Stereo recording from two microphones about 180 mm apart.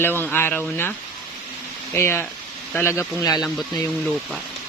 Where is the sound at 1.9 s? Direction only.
15° left (ahead or behind).